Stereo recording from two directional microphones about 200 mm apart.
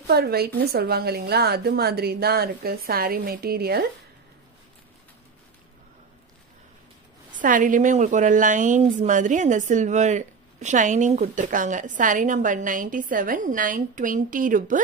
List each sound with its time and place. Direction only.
0.0 s a woman's voice: 55° right (ahead or behind)
7.3 s a woman's voice: 40° right (ahead or behind)